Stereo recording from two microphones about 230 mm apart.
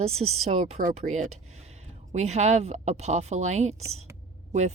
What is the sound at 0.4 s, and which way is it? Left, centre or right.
Speech, right.